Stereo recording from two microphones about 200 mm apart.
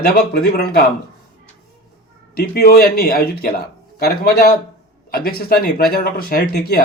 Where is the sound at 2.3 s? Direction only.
50° left (ahead or behind).